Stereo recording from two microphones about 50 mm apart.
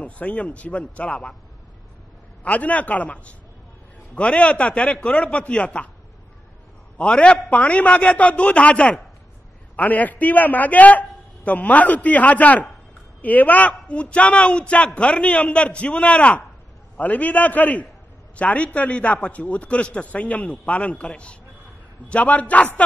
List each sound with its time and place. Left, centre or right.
0.0 s a man's voice: left
2.4 s a man's voice: left
7.0 s a man's voice: left